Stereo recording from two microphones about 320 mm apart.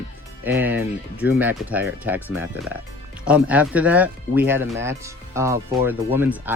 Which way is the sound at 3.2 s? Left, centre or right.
Centre.